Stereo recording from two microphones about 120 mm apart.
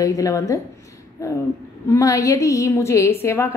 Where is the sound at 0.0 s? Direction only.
30° left (ahead or behind).